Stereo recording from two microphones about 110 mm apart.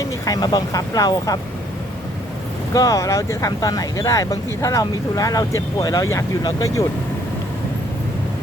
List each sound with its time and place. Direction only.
0.0 s speech: 35° left (ahead or behind)
2.7 s speech: 30° left (ahead or behind)